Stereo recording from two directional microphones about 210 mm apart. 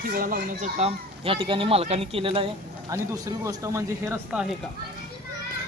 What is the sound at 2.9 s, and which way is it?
Speech, 15° right (ahead or behind).